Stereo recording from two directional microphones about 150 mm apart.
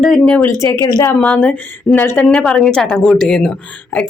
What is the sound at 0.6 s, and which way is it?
Speech, 25° left (ahead or behind).